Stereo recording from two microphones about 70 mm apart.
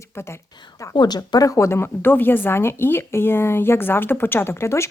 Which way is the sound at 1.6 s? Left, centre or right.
Left.